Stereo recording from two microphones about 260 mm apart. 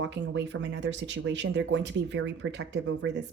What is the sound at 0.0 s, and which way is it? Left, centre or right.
Speech, right.